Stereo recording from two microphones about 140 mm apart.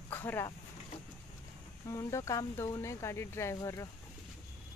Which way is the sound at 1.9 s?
20° left (ahead or behind).